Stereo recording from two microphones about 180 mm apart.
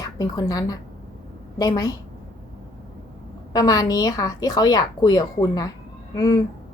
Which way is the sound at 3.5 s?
20° left (ahead or behind).